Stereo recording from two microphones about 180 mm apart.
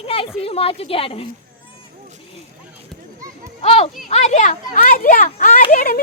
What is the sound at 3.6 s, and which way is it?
Speech, 35° left (ahead or behind).